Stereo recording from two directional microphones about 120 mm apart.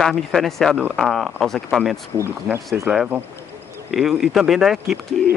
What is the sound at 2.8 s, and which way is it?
Speech, 5° right (ahead or behind).